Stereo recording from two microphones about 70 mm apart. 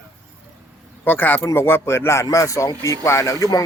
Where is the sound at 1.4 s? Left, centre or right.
Left.